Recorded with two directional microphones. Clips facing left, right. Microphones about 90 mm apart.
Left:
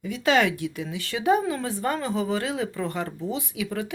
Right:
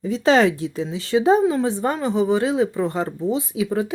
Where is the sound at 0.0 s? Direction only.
30° right (ahead or behind).